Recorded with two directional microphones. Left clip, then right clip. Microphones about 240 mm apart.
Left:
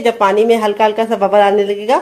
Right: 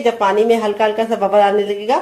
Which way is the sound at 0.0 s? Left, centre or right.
Left.